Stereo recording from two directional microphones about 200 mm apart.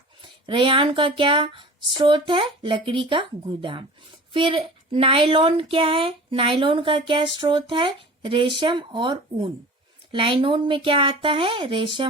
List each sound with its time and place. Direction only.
0.4 s speech: 25° right (ahead or behind)